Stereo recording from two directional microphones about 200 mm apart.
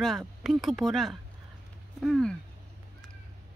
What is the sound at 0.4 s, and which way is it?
Speech, centre (ahead or behind).